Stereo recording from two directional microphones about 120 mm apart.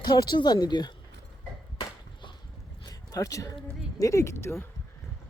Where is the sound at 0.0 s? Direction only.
35° left (ahead or behind).